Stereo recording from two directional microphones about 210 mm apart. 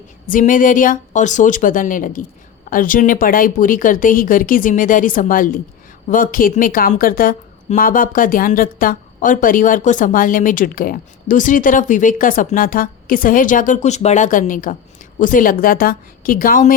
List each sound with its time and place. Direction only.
0.3 s a woman's voice: 40° left (ahead or behind)